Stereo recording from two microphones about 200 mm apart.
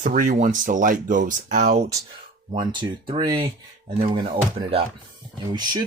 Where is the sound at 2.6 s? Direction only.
25° right (ahead or behind).